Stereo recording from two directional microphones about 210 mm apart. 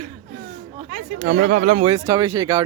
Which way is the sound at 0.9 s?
45° right (ahead or behind).